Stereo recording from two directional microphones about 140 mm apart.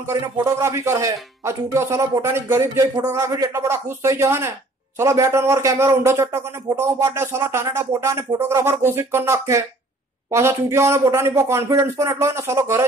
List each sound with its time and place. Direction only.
0.0 s a man's voice: 20° right (ahead or behind)